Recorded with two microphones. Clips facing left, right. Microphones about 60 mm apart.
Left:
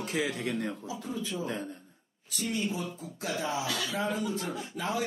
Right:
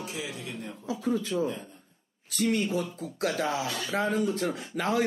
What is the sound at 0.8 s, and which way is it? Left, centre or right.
A man's voice, right.